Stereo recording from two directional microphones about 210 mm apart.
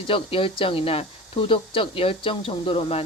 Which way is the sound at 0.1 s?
25° left (ahead or behind).